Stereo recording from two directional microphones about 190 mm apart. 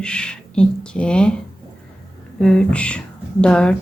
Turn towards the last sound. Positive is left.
turn(degrees=5)  # may be behind; listen again after turning